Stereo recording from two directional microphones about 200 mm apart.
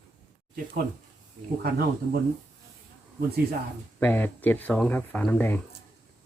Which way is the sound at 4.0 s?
10° left (ahead or behind).